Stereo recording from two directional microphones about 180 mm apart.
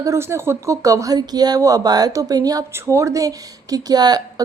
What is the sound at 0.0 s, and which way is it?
A woman's voice, 15° right (ahead or behind).